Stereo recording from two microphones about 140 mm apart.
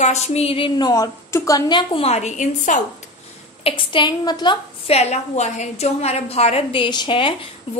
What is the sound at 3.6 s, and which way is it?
A woman's voice, 40° left (ahead or behind).